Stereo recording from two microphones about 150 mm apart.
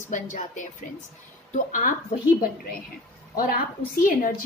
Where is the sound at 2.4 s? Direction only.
75° left (ahead or behind).